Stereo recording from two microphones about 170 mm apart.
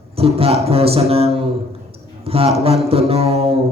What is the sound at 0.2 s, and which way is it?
Mantra, 35° right (ahead or behind).